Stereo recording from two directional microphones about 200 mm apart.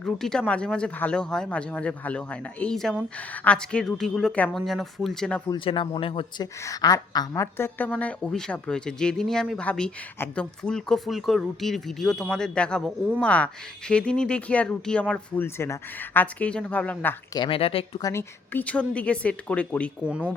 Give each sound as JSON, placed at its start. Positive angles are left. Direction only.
{"t": 0.0, "sound": "a woman's voice", "side_deg": 5}
{"t": 5.5, "sound": "speech", "side_deg": 25}
{"t": 6.6, "sound": "a woman's voice", "side_deg": 15}
{"t": 17.3, "sound": "speech", "side_deg": 25}
{"t": 18.0, "sound": "a woman's voice", "side_deg": 15}